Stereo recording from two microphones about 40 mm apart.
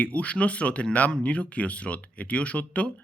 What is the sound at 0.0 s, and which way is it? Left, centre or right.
Speech, left.